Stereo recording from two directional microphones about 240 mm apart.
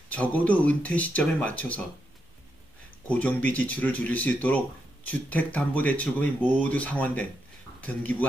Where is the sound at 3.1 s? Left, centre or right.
Centre.